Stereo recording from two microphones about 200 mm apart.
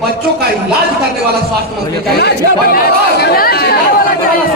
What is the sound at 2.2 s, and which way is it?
Speech, 50° left (ahead or behind).